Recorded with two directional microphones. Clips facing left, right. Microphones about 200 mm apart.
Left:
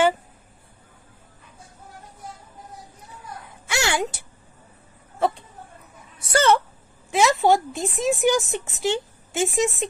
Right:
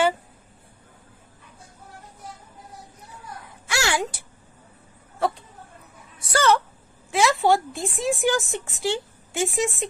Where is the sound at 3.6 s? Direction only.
25° left (ahead or behind).